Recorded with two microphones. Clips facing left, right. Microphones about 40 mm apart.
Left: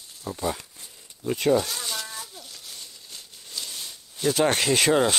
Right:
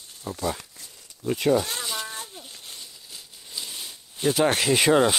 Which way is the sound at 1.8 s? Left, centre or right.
Centre.